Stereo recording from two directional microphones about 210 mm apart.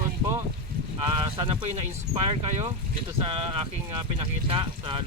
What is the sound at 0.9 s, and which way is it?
Speech, 25° right (ahead or behind).